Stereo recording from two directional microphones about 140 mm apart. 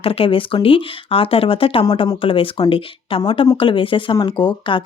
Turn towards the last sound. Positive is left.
turn(degrees=35)  # may be behind; listen again after turning